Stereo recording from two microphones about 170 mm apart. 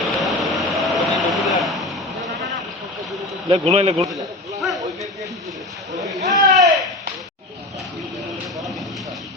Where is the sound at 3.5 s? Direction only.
35° right (ahead or behind).